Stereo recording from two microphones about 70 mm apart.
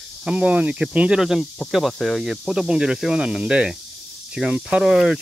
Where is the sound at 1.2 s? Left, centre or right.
Centre.